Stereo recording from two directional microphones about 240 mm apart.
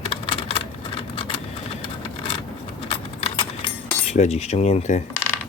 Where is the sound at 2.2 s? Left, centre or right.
Left.